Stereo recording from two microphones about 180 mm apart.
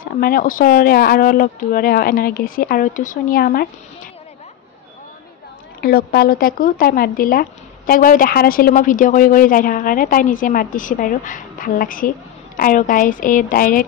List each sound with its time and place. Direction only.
0.0 s speech: 55° left (ahead or behind)
5.8 s speech: 55° left (ahead or behind)